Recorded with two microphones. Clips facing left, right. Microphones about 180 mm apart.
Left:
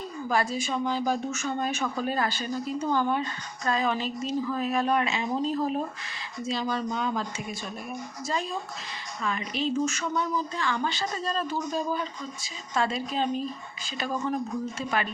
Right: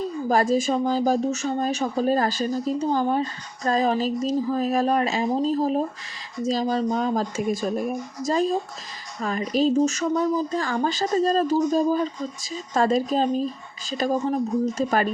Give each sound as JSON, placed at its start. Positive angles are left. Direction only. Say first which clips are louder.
{"t": 0.3, "sound": "speech", "louder": "right 7 dB", "side_deg": -45}